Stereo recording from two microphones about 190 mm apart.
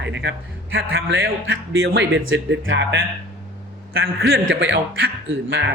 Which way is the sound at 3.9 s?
55° right (ahead or behind).